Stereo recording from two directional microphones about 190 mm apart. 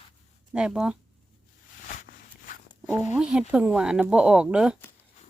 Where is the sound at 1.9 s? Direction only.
45° left (ahead or behind).